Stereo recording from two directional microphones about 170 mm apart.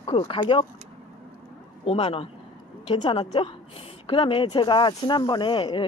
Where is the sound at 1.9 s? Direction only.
30° left (ahead or behind).